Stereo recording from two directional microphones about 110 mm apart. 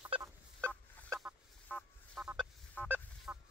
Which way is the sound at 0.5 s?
10° left (ahead or behind).